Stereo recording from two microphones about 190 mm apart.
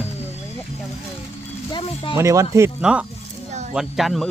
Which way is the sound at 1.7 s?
25° left (ahead or behind).